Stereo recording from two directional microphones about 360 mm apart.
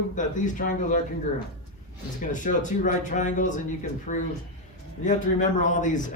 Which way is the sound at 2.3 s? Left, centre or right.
Left.